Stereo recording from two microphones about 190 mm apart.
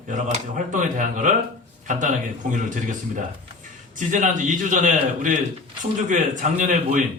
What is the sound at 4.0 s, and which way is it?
A man's voice, 40° right (ahead or behind).